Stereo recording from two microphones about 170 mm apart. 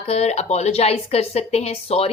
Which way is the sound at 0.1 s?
40° left (ahead or behind).